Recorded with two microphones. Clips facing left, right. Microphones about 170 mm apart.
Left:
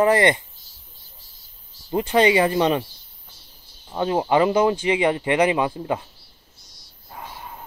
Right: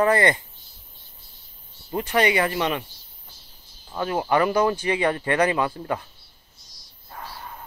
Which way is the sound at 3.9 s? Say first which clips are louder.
Left 3 dB; 25° left (ahead or behind).